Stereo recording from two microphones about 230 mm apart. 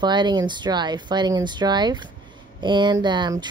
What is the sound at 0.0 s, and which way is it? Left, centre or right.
Speech, centre.